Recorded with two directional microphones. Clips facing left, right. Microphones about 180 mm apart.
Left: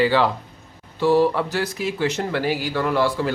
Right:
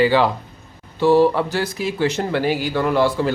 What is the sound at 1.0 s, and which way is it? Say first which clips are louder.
Speech: right 3 dB; 25° right (ahead or behind).